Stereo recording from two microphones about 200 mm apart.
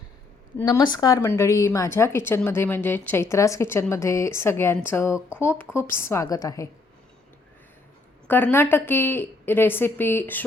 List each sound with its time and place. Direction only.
0.6 s speech: 20° left (ahead or behind)
8.3 s speech: 10° left (ahead or behind)